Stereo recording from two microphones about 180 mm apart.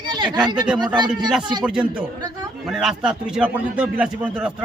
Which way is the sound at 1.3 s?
5° right (ahead or behind).